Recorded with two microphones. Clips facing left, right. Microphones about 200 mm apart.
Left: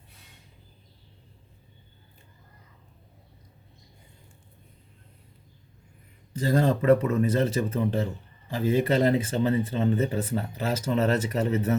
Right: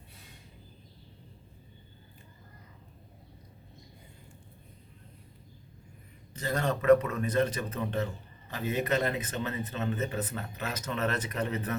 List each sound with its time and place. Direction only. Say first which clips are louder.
6.4 s speech: left 6 dB; 30° left (ahead or behind)